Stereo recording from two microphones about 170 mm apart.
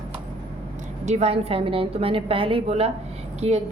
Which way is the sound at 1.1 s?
40° right (ahead or behind).